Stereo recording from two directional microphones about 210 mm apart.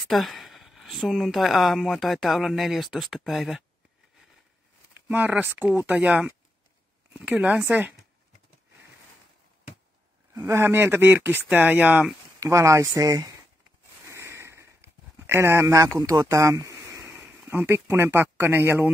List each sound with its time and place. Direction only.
0.0 s speech: centre (ahead or behind)
5.0 s speech: 10° right (ahead or behind)
10.3 s speech: 10° right (ahead or behind)
14.0 s a sound: 15° right (ahead or behind)
16.0 s speech: 15° right (ahead or behind)